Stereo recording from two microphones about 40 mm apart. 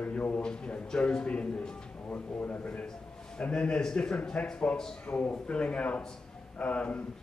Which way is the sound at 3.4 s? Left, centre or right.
Left.